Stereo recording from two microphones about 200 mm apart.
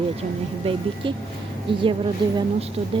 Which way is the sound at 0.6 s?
25° right (ahead or behind).